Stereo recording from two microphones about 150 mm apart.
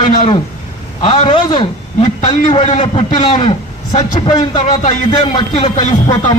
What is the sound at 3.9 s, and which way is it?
Speech, 30° left (ahead or behind).